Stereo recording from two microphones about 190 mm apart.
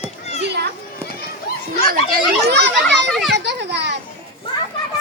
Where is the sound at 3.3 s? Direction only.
65° right (ahead or behind).